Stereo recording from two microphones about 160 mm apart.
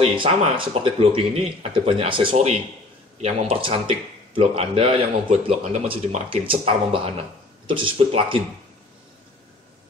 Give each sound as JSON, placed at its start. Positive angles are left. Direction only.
{"t": 0.0, "sound": "a man's voice", "side_deg": -30}